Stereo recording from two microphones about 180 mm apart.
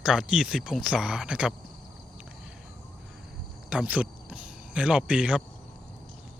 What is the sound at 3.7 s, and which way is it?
Speech, 10° right (ahead or behind).